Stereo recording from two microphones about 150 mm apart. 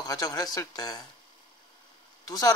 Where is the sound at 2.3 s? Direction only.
25° left (ahead or behind).